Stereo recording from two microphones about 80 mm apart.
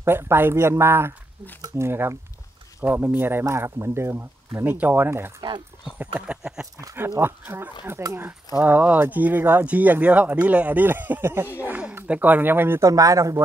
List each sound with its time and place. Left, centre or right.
0.0 s speech: right
6.4 s speech: centre
7.2 s speech: right
12.8 s speech: right